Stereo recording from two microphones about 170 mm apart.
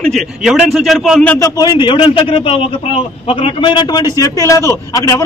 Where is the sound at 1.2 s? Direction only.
10° left (ahead or behind).